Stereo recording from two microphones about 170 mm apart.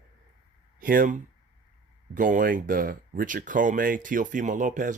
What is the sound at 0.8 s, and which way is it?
Speech, 55° right (ahead or behind).